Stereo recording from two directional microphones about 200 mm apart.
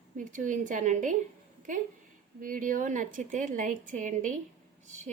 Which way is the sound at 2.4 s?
40° right (ahead or behind).